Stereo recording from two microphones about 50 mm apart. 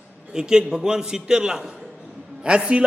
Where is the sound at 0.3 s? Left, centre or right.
Centre.